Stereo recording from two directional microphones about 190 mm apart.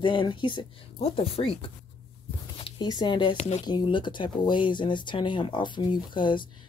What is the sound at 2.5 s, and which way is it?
Speech, 25° left (ahead or behind).